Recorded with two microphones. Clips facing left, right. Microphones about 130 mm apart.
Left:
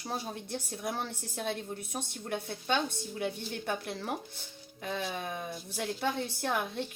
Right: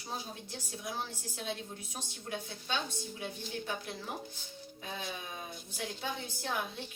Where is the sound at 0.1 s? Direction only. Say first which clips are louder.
Left 5 dB; 60° left (ahead or behind).